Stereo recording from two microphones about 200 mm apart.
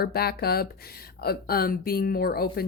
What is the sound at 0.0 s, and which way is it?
A woman's voice, 50° left (ahead or behind).